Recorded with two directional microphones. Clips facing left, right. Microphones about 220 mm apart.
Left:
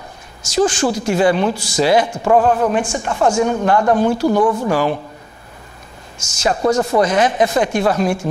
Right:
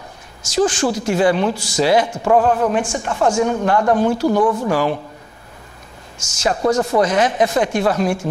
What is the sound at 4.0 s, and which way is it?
Speech, 40° left (ahead or behind).